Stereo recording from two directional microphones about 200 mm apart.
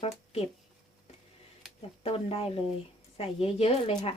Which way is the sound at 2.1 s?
30° left (ahead or behind).